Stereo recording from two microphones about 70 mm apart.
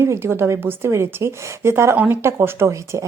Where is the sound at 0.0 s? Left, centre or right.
Right.